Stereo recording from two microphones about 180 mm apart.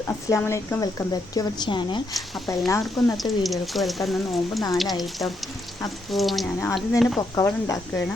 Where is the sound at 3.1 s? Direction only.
Centre (ahead or behind).